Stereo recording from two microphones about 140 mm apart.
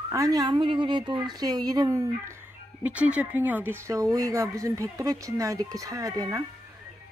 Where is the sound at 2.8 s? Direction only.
10° right (ahead or behind); by 6.4 s 25° right (ahead or behind).